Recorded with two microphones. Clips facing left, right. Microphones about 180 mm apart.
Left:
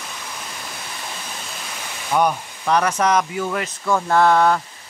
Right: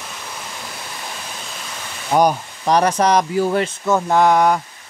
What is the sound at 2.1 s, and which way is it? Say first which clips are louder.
Speech: right 4 dB; 35° right (ahead or behind).